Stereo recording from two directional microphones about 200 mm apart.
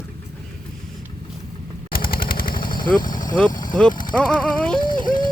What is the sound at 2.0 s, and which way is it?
Machine gun, 45° left (ahead or behind).